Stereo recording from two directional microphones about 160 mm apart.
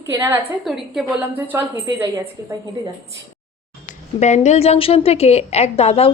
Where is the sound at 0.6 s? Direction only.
Centre (ahead or behind).